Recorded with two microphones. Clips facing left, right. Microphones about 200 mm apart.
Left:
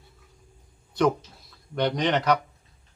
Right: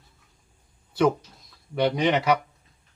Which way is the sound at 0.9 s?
5° right (ahead or behind).